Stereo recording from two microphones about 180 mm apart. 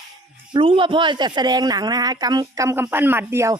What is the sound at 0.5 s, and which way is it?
Speech, 30° right (ahead or behind).